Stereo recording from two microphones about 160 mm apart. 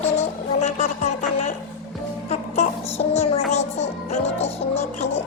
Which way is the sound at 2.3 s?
40° left (ahead or behind).